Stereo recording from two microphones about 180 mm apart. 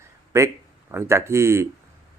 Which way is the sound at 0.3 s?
15° right (ahead or behind).